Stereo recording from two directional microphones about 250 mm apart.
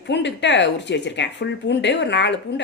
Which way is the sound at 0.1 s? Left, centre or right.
Left.